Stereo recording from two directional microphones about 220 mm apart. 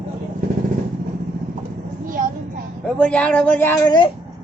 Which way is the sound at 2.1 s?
35° right (ahead or behind).